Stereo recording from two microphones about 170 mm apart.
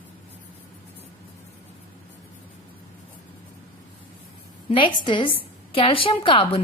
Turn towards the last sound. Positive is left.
turn(degrees=30)  # may be behind; listen again after turning